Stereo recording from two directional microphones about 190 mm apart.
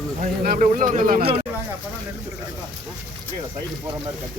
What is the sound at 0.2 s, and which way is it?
Speech, 45° right (ahead or behind).